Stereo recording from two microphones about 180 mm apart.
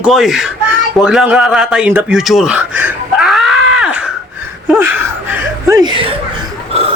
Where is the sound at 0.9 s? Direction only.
5° right (ahead or behind).